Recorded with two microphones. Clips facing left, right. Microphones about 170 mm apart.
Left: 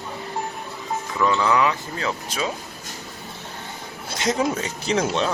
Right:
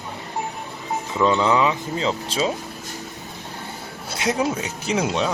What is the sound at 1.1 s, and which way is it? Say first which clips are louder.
Speech: right 2 dB; 20° right (ahead or behind).